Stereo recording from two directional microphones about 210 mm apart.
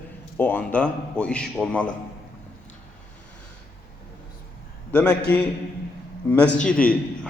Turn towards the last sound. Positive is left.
turn(degrees=5)  # may be behind; listen again after turning